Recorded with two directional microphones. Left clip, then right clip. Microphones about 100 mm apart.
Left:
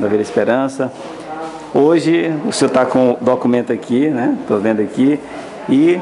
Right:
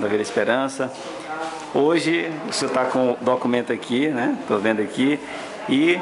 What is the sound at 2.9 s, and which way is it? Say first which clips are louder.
Speech: left 6 dB; 5° left (ahead or behind).